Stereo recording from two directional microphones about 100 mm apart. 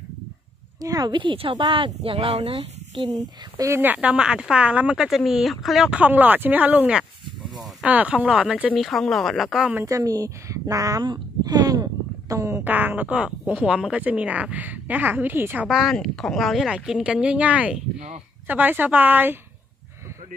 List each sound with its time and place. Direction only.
0.7 s speech: 40° right (ahead or behind); by 2.2 s 60° right (ahead or behind)
2.6 s a sound: 65° right (ahead or behind)
3.5 s speech: 30° right (ahead or behind)
3.8 s speech: 15° right (ahead or behind)
8.7 s speech: centre (ahead or behind)
9.8 s speech: 35° right (ahead or behind)
12.6 s speech: 15° right (ahead or behind)
15.7 s a woman's voice: centre (ahead or behind); by 19.3 s 20° right (ahead or behind)